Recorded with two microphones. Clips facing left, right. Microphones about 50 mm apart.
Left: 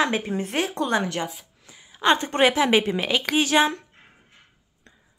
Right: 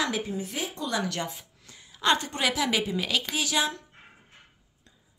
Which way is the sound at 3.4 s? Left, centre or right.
Left.